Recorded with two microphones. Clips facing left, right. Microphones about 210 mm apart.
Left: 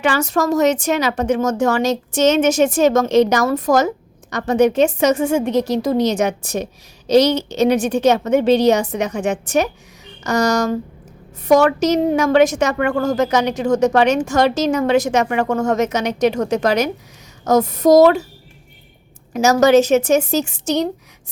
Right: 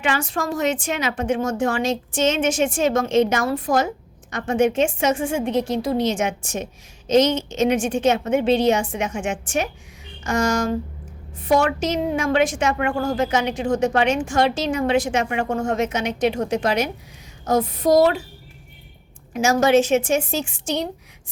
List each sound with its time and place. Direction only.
0.0 s speech: 40° left (ahead or behind)
19.3 s speech: 40° left (ahead or behind)